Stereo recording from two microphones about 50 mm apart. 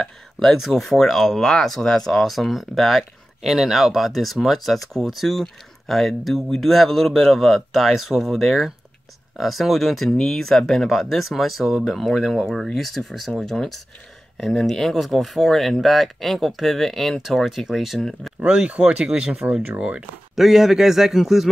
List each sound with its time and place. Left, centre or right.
0.0 s speech: centre
18.4 s speech: centre
20.3 s speech: centre